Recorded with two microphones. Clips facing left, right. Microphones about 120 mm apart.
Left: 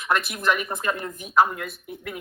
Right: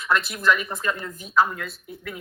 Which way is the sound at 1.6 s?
50° left (ahead or behind).